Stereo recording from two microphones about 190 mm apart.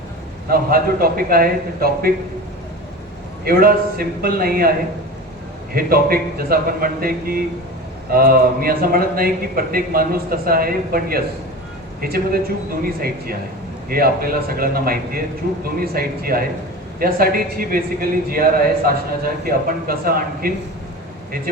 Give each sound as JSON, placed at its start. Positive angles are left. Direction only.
{"t": 0.5, "sound": "a man's voice", "side_deg": -50}
{"t": 3.4, "sound": "a man's voice", "side_deg": -50}
{"t": 5.7, "sound": "a man's voice", "side_deg": -50}